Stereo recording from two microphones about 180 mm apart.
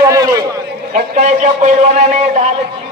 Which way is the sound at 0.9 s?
40° right (ahead or behind).